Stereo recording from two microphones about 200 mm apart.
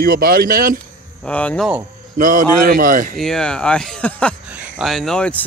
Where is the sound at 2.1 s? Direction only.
40° right (ahead or behind).